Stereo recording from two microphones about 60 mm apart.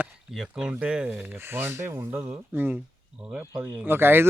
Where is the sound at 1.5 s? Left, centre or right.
Right.